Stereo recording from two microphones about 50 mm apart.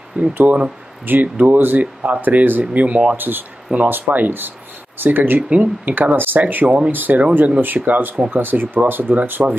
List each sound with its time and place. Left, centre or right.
0.3 s speech: right
3.2 s speech: right